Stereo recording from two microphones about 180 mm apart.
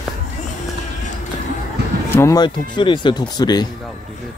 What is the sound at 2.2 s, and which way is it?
Speech, 20° left (ahead or behind).